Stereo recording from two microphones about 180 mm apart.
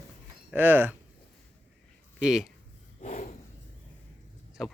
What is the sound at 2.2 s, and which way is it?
Speech, centre (ahead or behind).